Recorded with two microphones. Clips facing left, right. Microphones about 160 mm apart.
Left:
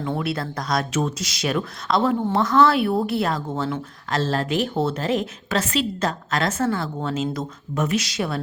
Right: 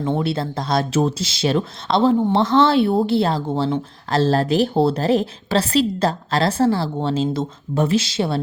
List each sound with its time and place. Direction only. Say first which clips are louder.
0.0 s speech: right 4 dB; 25° right (ahead or behind)